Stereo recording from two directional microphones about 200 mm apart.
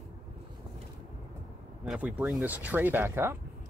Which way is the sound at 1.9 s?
5° right (ahead or behind).